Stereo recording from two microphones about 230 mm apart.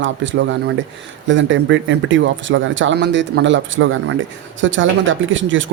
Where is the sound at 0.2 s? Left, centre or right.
Right.